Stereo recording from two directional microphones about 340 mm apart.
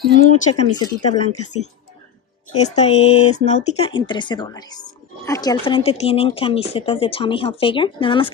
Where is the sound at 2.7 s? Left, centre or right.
Centre.